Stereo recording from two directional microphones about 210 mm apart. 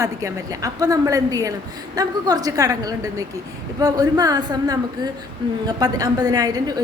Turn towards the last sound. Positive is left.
turn(degrees=-20)  # may be behind; listen again after turning